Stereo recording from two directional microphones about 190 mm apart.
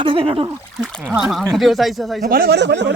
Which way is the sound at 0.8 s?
Centre (ahead or behind).